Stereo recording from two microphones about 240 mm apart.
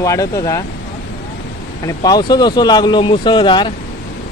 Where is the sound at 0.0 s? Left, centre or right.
Centre.